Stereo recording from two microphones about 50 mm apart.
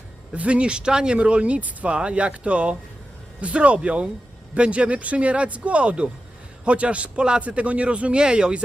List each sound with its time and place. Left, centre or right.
0.3 s speech: right